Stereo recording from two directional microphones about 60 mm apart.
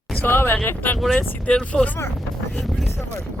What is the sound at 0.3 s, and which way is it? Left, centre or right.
Speech, left.